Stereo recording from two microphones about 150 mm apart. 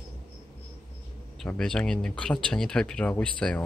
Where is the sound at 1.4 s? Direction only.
5° left (ahead or behind).